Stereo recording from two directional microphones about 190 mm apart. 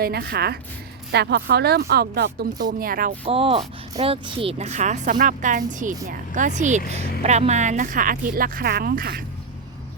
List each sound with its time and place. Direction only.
0.0 s speech: 55° right (ahead or behind)
3.2 s a woman's voice: 30° right (ahead or behind); by 9.2 s 50° right (ahead or behind)